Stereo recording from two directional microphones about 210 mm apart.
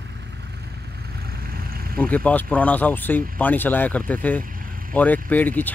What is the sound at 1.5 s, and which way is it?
Vehicle, 45° right (ahead or behind).